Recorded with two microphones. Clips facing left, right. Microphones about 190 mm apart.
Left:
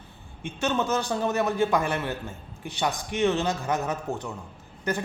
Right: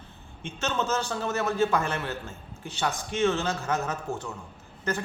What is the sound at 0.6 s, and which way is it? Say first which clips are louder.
A man's voice: left 3 dB; 15° left (ahead or behind).